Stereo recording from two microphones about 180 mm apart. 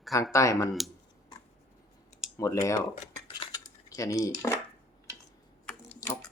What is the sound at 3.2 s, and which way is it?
Cutlery, 25° left (ahead or behind).